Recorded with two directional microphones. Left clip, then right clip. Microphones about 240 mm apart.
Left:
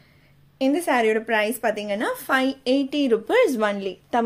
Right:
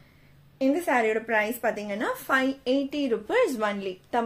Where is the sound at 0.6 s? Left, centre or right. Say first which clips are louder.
Left 3 dB; left.